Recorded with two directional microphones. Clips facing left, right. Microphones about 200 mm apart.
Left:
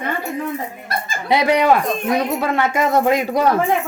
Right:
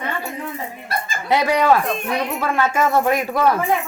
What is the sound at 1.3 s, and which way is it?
Speech, 15° left (ahead or behind).